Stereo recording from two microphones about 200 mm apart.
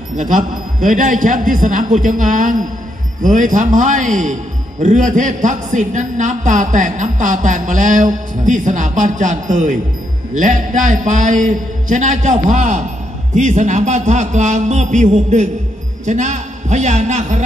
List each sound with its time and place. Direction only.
0.2 s a man's voice: 40° right (ahead or behind)